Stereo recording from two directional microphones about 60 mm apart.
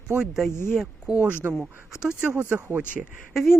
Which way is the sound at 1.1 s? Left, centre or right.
Centre.